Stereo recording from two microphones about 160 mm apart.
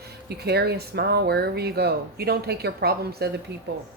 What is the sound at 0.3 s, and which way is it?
Speech, 90° right.